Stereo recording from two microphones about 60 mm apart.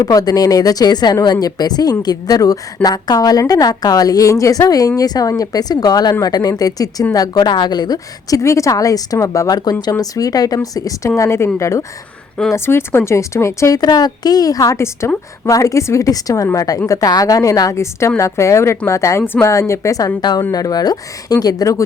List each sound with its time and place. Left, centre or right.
0.0 s a woman's voice: left
4.7 s a woman's voice: left
7.9 s a woman's voice: left
11.2 s a woman's voice: left
12.5 s speech: left
13.1 s a woman's voice: left
13.7 s a woman's voice: left
14.7 s speech: left
15.4 s a woman's voice: left
16.0 s a woman's voice: left
20.5 s a woman's voice: left